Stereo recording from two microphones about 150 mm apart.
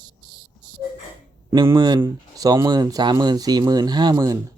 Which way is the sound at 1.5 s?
20° right (ahead or behind).